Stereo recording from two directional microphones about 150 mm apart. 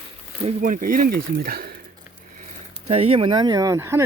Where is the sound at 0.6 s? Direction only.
65° right (ahead or behind); by 1.7 s 85° right.